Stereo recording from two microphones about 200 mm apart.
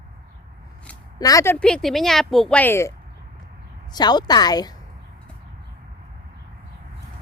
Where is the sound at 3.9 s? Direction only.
20° left (ahead or behind).